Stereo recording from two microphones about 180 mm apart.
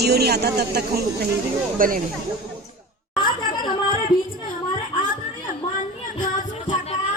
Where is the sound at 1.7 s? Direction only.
50° right (ahead or behind).